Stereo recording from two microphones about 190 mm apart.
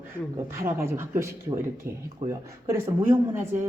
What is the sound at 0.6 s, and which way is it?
Speech, 15° right (ahead or behind).